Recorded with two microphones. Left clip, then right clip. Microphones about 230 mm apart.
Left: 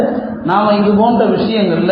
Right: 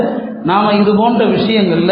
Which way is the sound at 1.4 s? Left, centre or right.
Right.